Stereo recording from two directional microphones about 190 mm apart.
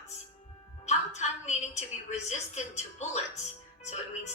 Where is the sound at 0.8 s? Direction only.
35° left (ahead or behind).